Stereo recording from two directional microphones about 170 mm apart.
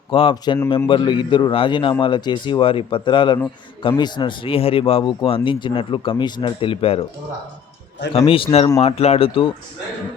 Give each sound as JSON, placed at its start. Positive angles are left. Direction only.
{"t": 0.1, "sound": "a man's voice", "side_deg": 30}
{"t": 8.1, "sound": "speech", "side_deg": 30}
{"t": 8.8, "sound": "speech", "side_deg": 35}